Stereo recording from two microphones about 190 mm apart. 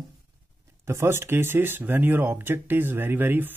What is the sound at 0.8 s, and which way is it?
Speech, 15° right (ahead or behind).